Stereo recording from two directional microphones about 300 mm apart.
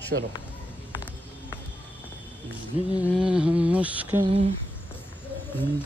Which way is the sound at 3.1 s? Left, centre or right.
Centre.